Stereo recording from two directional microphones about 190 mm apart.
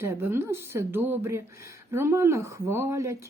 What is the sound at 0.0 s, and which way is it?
Speech, 15° right (ahead or behind).